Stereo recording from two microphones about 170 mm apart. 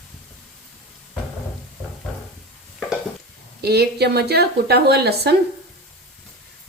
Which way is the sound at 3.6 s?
70° right (ahead or behind).